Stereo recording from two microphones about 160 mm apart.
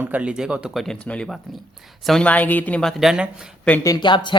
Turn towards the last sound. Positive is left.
turn(degrees=30)  # may be behind; listen again after turning